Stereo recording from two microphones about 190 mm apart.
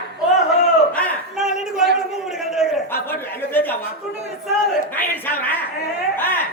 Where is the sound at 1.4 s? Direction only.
Centre (ahead or behind).